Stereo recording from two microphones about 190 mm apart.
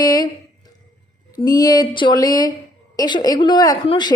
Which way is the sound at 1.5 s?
20° left (ahead or behind).